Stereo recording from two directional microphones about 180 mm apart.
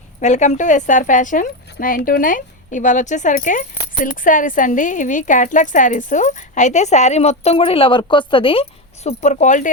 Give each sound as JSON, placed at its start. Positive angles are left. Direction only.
{"t": 0.2, "sound": "speech", "side_deg": 40}
{"t": 9.0, "sound": "speech", "side_deg": 40}